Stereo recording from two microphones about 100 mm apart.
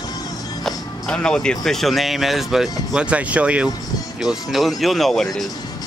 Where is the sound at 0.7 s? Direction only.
10° left (ahead or behind); by 3.7 s 15° right (ahead or behind).